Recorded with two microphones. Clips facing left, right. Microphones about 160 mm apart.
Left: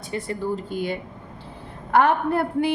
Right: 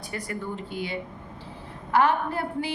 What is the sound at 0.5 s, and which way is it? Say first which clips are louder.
Speech: left 6 dB; 45° left (ahead or behind).